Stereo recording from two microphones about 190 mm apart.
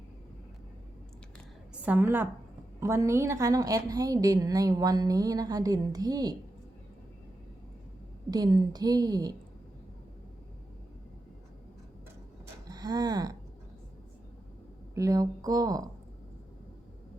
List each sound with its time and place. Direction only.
1.7 s a woman's voice: 10° right (ahead or behind)
8.3 s a woman's voice: 20° right (ahead or behind)
12.6 s a sound: 20° right (ahead or behind)
14.9 s a woman's voice: 15° right (ahead or behind)